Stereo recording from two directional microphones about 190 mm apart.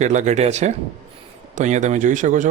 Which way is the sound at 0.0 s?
40° right (ahead or behind).